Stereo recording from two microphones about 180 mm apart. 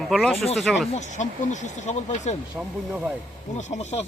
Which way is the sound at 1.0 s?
40° left (ahead or behind).